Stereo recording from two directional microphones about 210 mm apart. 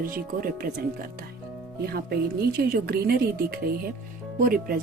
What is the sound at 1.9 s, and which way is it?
Speech, 50° right (ahead or behind).